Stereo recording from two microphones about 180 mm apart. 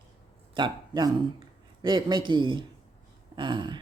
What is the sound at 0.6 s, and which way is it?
Speech, 25° right (ahead or behind).